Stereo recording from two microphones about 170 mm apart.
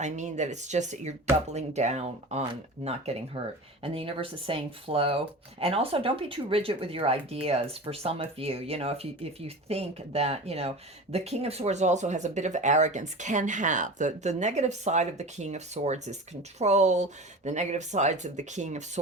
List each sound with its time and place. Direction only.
0.0 s speech: 45° right (ahead or behind)